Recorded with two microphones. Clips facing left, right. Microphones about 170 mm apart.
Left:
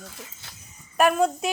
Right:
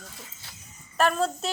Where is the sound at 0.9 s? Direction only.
10° left (ahead or behind).